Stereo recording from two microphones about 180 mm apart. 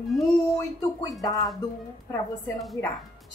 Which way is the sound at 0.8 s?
20° left (ahead or behind).